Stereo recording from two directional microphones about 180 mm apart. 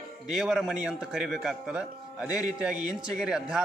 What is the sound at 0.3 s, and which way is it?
A man's voice, centre (ahead or behind).